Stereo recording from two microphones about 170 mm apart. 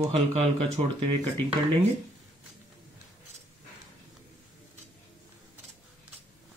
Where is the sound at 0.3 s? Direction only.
40° right (ahead or behind).